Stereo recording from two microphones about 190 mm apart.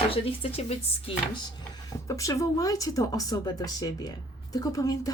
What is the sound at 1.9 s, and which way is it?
Speech, 15° left (ahead or behind).